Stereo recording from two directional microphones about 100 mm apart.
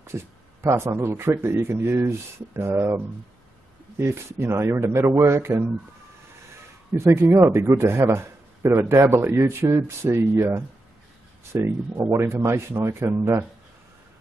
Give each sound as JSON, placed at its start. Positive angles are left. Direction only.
{"t": 0.0, "sound": "speech", "side_deg": -25}
{"t": 4.0, "sound": "speech", "side_deg": -25}
{"t": 7.0, "sound": "speech", "side_deg": -25}